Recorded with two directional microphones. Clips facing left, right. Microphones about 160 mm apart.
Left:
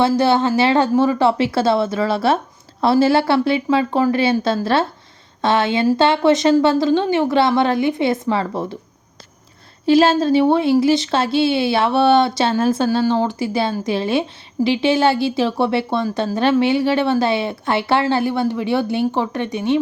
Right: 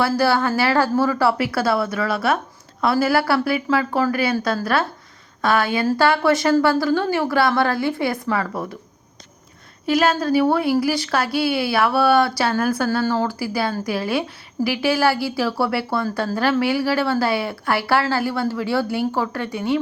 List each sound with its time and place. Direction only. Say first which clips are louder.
0.0 s a woman's voice: left 3 dB; 20° left (ahead or behind)
9.8 s a woman's voice: left 5 dB; 30° left (ahead or behind)